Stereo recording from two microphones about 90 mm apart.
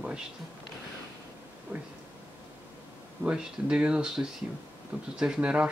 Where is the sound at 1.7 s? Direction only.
20° right (ahead or behind).